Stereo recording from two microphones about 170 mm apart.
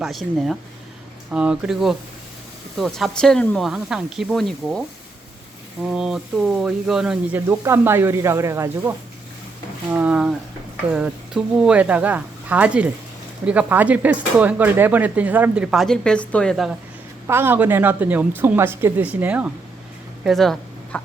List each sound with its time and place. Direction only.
0.0 s speech: centre (ahead or behind)
5.8 s speech: 5° right (ahead or behind)
7.4 s speech: 15° right (ahead or behind); by 16.7 s centre (ahead or behind)
17.2 s speech: 15° right (ahead or behind)